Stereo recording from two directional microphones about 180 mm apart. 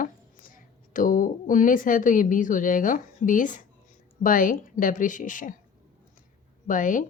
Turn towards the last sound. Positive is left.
turn(degrees=45)  # may be behind; listen again after turning